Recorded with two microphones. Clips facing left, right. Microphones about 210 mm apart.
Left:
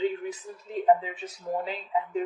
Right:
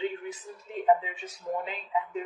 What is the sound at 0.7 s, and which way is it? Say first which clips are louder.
Speech: left 2 dB; 35° left (ahead or behind).